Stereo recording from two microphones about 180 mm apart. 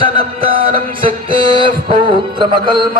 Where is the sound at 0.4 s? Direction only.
50° right (ahead or behind).